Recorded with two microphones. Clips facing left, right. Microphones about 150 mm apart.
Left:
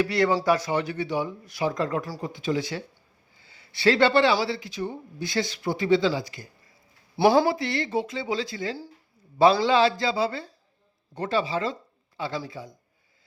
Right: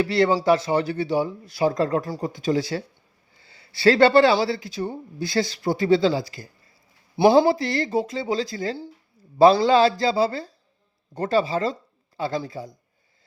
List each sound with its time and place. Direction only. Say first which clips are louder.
0.0 s speech: right 3 dB; 30° right (ahead or behind)
3.3 s a sound: right 1 dB; 35° right (ahead or behind)
4.4 s speech: right 3 dB; 40° right (ahead or behind)
7.2 s speech: right 4 dB; 20° right (ahead or behind)
7.5 s speech: right 3 dB; 35° right (ahead or behind)